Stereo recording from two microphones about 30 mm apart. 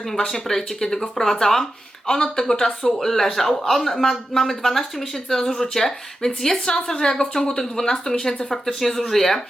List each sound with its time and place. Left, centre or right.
0.4 s speech: centre
2.0 s a woman's voice: left; by 9.4 s centre